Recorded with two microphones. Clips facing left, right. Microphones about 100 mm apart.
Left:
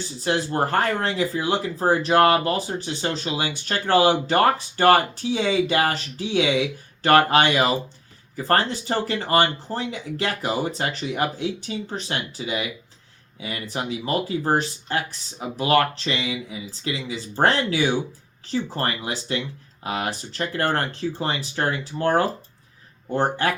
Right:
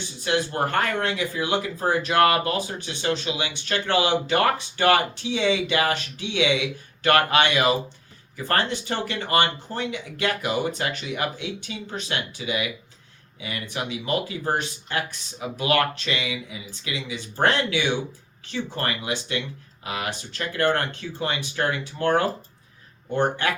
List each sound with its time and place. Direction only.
0.3 s speech: 35° left (ahead or behind)